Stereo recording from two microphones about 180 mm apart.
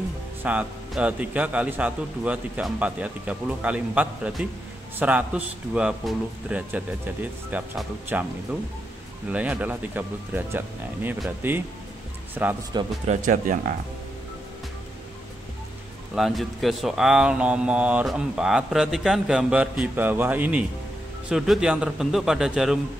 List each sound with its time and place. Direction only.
0.4 s a man's voice: 5° right (ahead or behind)
9.3 s a man's voice: 10° right (ahead or behind)
13.0 s speech: 45° right (ahead or behind)
16.2 s speech: centre (ahead or behind)